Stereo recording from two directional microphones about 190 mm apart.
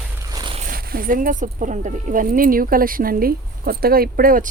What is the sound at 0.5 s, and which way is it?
Speech, 45° right (ahead or behind).